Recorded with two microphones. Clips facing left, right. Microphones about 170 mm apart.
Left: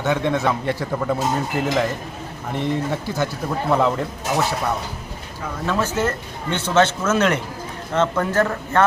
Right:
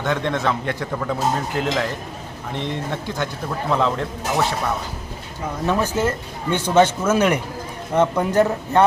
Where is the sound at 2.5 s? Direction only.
5° left (ahead or behind).